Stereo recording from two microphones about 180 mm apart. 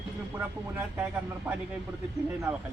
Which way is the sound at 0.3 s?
10° right (ahead or behind).